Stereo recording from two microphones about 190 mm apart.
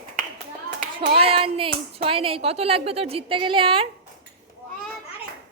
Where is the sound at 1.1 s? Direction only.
30° right (ahead or behind).